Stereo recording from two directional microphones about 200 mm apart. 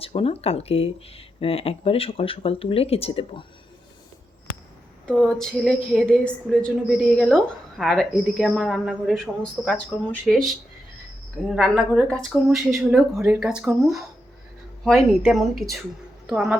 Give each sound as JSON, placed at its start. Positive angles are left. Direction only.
{"t": 0.0, "sound": "speech", "side_deg": 30}
{"t": 5.0, "sound": "a woman's voice", "side_deg": 0}